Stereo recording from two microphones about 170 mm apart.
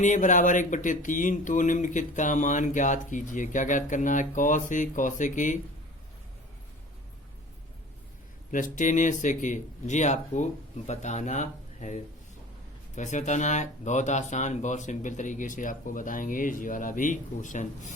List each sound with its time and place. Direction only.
0.0 s speech: 45° left (ahead or behind)
8.5 s speech: 50° left (ahead or behind)
13.0 s speech: 45° left (ahead or behind)